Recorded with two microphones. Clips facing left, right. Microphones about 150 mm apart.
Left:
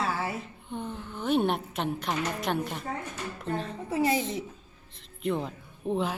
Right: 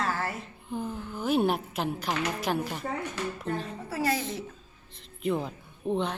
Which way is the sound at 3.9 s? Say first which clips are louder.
Left 3 dB; 20° left (ahead or behind).